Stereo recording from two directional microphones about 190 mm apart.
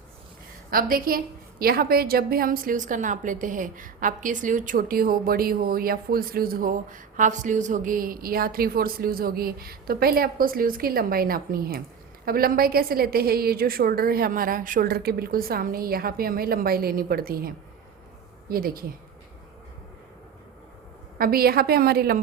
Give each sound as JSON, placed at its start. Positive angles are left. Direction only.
{"t": 0.7, "sound": "a woman's voice", "side_deg": -50}
{"t": 21.2, "sound": "a woman's voice", "side_deg": -50}